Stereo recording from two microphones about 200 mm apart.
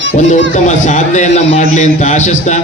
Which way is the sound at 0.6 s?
35° left (ahead or behind).